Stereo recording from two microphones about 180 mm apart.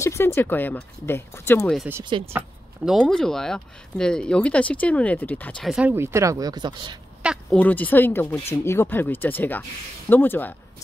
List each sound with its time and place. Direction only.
0.0 s speech: 15° left (ahead or behind)
2.0 s speech: 25° right (ahead or behind)
2.3 s speech: 5° right (ahead or behind)
5.6 s speech: 5° right (ahead or behind); by 7.0 s 25° right (ahead or behind)
7.5 s speech: 10° left (ahead or behind)